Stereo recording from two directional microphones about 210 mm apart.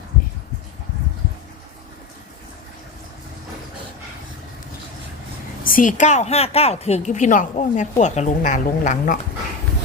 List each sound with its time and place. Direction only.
5.6 s speech: 40° left (ahead or behind)